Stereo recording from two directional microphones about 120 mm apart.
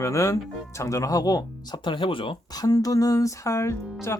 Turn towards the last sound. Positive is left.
turn(degrees=25)  # may be behind; listen again after turning